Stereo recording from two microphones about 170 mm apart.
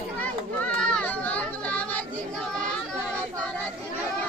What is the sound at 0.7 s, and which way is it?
Children playing, 10° left (ahead or behind).